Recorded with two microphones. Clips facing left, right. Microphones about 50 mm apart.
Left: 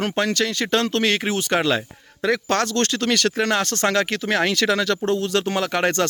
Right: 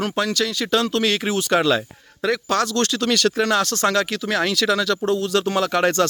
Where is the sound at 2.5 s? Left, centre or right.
Left.